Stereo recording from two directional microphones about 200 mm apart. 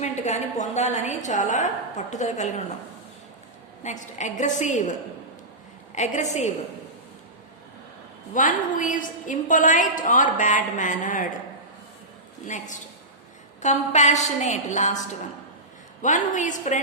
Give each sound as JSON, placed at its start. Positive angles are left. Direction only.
{"t": 0.0, "sound": "a woman's voice", "side_deg": 35}
{"t": 3.8, "sound": "a woman's voice", "side_deg": 35}
{"t": 8.3, "sound": "a woman's voice", "side_deg": 40}
{"t": 12.5, "sound": "a woman's voice", "side_deg": 40}
{"t": 16.0, "sound": "a woman's voice", "side_deg": 40}